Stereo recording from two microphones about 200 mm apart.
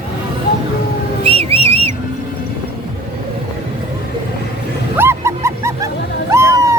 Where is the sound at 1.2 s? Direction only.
30° right (ahead or behind).